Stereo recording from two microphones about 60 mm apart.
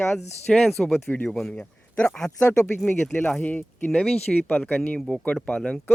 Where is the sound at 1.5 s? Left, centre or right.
Left.